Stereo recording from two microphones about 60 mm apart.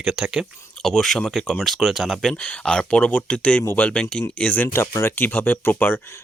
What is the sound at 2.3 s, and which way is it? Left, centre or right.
Speech, left.